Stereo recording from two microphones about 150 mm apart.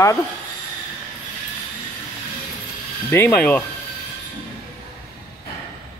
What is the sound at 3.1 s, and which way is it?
Speech, 15° left (ahead or behind).